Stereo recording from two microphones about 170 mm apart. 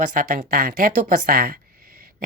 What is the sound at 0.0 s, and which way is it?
Speech, 50° right (ahead or behind).